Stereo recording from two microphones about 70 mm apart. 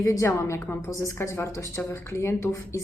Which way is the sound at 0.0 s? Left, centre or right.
Left.